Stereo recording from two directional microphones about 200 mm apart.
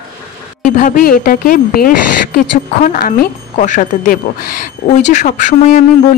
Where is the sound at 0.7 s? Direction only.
45° left (ahead or behind).